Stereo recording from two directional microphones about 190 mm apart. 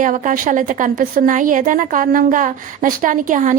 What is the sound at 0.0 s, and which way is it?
A woman's voice, 45° right (ahead or behind).